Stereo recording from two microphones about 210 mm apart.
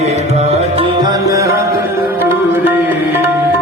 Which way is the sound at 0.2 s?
30° right (ahead or behind).